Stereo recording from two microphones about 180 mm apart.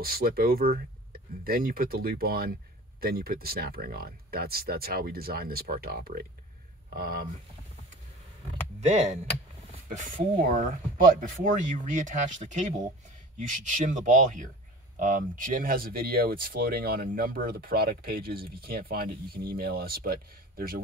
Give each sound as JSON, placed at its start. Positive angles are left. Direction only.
{"t": 0.0, "sound": "speech", "side_deg": -55}
{"t": 8.8, "sound": "speech", "side_deg": -40}